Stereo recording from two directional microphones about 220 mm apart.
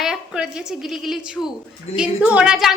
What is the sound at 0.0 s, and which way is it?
A woman's voice, centre (ahead or behind).